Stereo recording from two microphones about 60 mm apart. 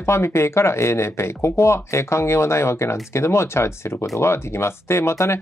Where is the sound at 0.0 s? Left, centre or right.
Left.